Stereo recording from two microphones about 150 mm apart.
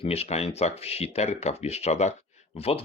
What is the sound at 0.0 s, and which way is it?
Speech, 45° left (ahead or behind).